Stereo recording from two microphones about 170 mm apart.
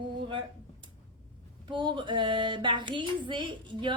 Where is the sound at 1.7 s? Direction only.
30° right (ahead or behind).